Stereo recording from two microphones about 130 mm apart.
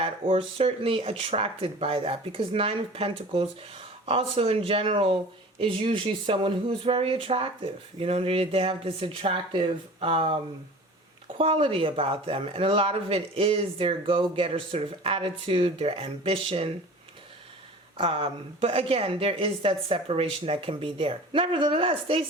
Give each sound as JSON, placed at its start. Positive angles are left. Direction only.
{"t": 0.0, "sound": "speech", "side_deg": -45}
{"t": 11.3, "sound": "speech", "side_deg": -45}
{"t": 17.9, "sound": "speech", "side_deg": -40}